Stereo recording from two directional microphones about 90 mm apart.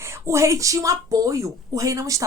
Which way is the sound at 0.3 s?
35° right (ahead or behind).